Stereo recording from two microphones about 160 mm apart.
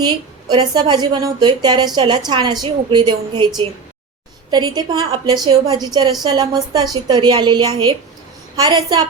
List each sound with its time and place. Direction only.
0.0 s a woman's voice: 25° right (ahead or behind)